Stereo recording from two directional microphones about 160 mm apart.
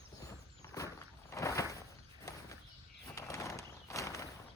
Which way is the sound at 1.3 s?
20° left (ahead or behind).